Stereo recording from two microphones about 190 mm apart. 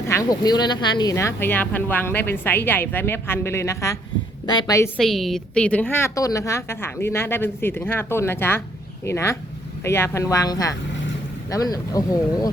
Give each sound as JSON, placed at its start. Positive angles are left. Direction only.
{"t": 0.1, "sound": "speech", "side_deg": 20}
{"t": 4.9, "sound": "speech", "side_deg": 0}